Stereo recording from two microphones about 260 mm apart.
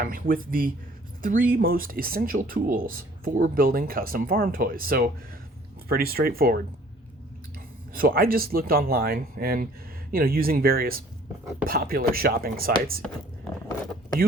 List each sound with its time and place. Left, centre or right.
0.0 s speech: right
7.9 s speech: right